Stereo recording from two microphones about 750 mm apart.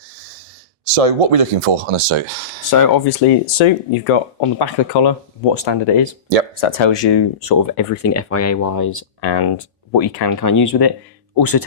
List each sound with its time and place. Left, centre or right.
0.9 s speech: right
2.6 s speech: left